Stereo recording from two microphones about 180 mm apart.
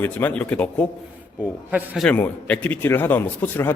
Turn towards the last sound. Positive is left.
turn(degrees=10)  # may be behind; listen again after turning